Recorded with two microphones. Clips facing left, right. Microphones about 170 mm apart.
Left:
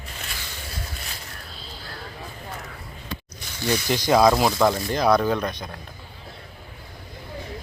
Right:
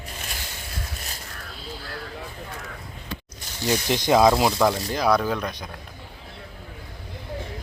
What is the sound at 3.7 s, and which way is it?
Speech, 20° right (ahead or behind).